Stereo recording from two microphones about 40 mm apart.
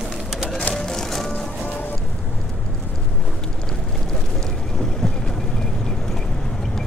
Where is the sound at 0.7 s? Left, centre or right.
Centre.